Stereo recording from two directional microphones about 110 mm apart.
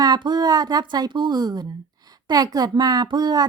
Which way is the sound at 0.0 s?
40° right (ahead or behind).